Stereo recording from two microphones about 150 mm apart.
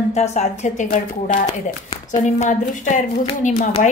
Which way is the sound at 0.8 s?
60° left (ahead or behind).